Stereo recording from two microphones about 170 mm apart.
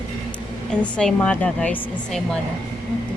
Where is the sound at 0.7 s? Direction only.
5° left (ahead or behind).